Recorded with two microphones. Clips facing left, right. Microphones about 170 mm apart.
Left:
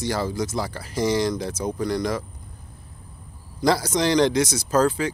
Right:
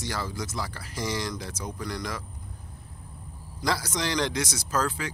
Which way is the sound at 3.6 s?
30° left (ahead or behind).